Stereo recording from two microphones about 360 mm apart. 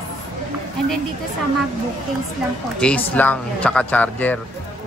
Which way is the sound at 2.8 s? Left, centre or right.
Centre.